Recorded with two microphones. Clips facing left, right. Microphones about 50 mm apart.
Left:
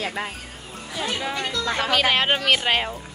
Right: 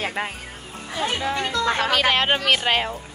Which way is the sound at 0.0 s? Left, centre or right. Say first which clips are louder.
Right 2 dB; right.